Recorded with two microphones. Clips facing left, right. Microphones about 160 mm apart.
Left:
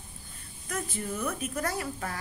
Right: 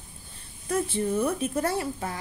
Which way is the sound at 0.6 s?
30° right (ahead or behind).